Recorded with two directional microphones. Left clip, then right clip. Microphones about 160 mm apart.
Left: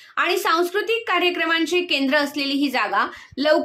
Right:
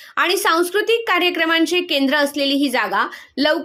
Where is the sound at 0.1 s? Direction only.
35° right (ahead or behind).